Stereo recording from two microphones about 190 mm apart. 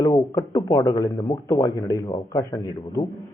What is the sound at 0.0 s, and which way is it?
A man's voice, 15° left (ahead or behind).